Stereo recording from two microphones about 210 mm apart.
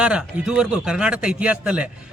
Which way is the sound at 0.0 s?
5° right (ahead or behind).